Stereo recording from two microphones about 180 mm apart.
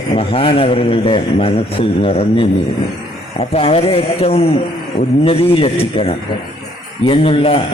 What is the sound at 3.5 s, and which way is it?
A man's voice, 35° left (ahead or behind).